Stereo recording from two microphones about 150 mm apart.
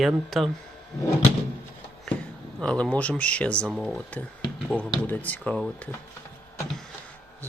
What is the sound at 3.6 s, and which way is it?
Speech, 5° right (ahead or behind).